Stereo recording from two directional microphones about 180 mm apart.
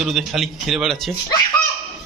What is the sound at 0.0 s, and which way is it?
Speech, centre (ahead or behind).